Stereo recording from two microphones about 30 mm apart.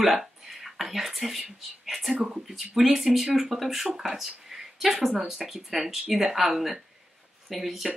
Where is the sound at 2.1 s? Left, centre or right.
Right.